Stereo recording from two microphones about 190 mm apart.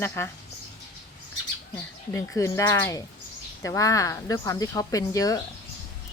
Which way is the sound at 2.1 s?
15° left (ahead or behind).